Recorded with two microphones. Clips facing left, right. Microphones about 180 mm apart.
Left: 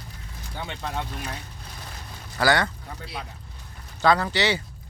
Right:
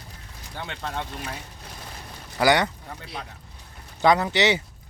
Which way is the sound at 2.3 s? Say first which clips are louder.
Right 2 dB; 20° right (ahead or behind).